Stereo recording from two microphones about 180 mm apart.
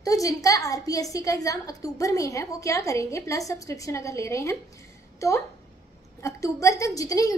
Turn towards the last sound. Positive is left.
turn(degrees=20)  # may be behind; listen again after turning